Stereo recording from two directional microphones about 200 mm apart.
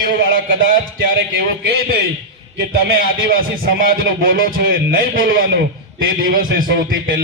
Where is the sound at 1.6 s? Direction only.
50° right (ahead or behind).